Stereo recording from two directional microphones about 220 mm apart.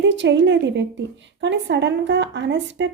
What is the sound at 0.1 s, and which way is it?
A woman's voice, 55° right (ahead or behind).